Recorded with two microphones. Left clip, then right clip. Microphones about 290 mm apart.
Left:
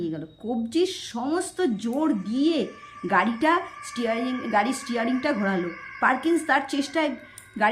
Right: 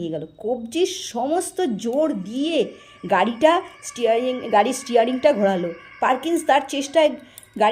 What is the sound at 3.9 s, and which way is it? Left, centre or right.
A woman's voice, centre.